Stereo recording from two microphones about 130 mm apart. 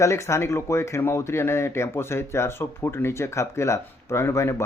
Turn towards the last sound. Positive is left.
turn(degrees=20)  # may be behind; listen again after turning